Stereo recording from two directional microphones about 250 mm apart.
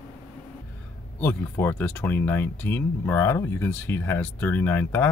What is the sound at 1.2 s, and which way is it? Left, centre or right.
Speech, centre.